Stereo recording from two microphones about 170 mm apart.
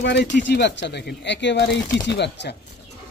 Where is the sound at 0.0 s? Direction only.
90° left.